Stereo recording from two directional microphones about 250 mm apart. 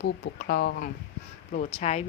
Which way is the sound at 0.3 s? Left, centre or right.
Left.